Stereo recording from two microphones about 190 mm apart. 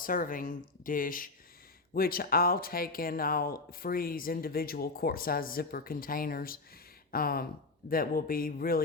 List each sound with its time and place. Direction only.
0.0 s speech: 45° left (ahead or behind)